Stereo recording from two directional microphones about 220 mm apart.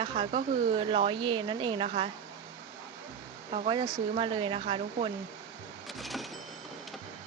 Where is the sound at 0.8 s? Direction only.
25° right (ahead or behind).